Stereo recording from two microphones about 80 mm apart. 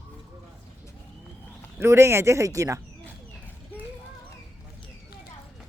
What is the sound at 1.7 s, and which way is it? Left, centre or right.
Speech, right.